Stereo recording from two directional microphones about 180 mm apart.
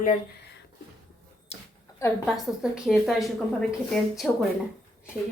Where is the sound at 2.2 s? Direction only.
Centre (ahead or behind).